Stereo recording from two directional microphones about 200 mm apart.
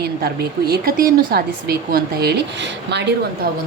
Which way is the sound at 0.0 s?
50° right (ahead or behind).